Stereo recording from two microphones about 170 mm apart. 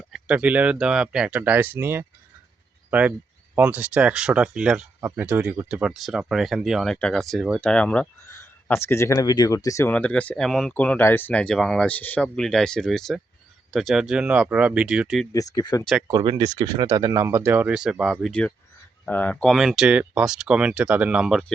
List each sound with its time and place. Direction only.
0.1 s speech: 10° right (ahead or behind)
15.3 s speech: 20° left (ahead or behind)
16.0 s speech: 25° right (ahead or behind); by 21.4 s 5° right (ahead or behind)